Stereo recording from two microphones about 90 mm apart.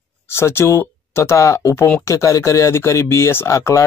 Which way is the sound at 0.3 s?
30° left (ahead or behind).